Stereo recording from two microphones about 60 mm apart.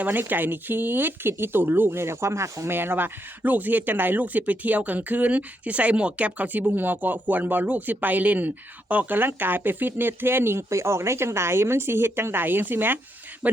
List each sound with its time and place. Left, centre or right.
0.0 s speech: right
2.7 s speech: right
13.4 s speech: right